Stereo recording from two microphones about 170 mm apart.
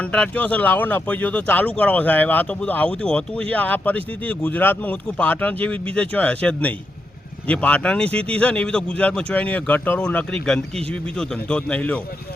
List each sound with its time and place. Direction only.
0.0 s speech: 5° left (ahead or behind)